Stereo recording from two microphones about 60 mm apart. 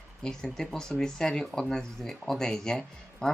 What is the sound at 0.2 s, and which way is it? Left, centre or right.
Speech, centre.